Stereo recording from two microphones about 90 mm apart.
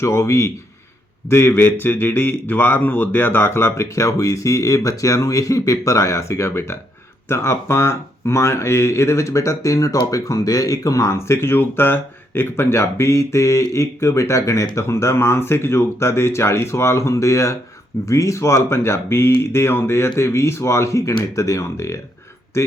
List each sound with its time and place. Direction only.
0.0 s speech: 30° left (ahead or behind)